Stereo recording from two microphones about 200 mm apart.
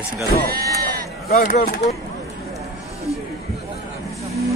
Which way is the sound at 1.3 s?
40° left (ahead or behind).